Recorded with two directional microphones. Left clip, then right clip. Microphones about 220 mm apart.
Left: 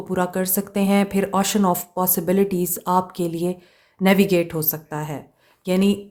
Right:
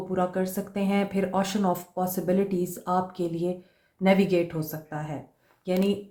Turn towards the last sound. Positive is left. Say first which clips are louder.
# left 5 dB
turn(degrees=45)  # may be behind; listen again after turning